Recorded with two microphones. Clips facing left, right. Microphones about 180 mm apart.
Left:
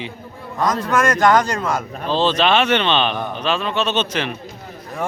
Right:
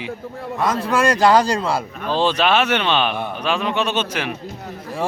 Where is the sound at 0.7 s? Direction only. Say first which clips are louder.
Even; 30° right (ahead or behind).